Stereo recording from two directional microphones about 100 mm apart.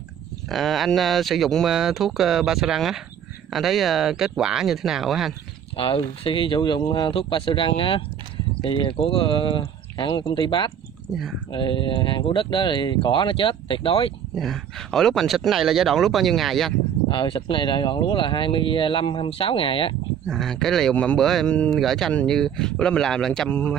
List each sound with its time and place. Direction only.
0.5 s speech: centre (ahead or behind)
5.8 s speech: 65° left (ahead or behind)
11.1 s speech: 5° left (ahead or behind)
11.5 s speech: 55° left (ahead or behind)
14.3 s speech: centre (ahead or behind)
17.1 s speech: 60° left (ahead or behind)
20.2 s speech: 5° left (ahead or behind)